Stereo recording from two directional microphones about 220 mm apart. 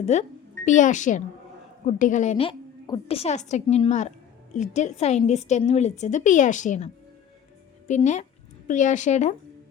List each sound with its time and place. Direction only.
0.0 s a woman's voice: 30° left (ahead or behind)